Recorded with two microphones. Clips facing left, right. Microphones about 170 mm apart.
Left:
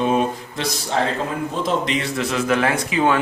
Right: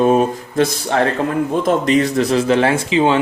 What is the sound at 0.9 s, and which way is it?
Speech, 65° right (ahead or behind).